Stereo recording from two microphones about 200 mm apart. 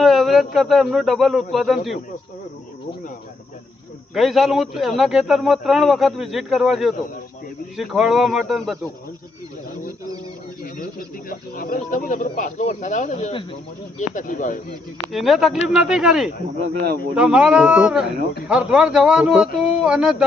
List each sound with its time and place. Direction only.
0.0 s a man's voice: centre (ahead or behind)
4.1 s a man's voice: centre (ahead or behind)
11.3 s speech: 45° left (ahead or behind)
15.1 s a man's voice: centre (ahead or behind)